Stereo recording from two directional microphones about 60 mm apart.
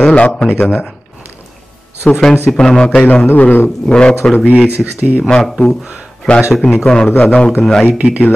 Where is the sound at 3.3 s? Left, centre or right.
Left.